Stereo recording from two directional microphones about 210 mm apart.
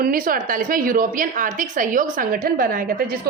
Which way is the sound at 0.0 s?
40° right (ahead or behind).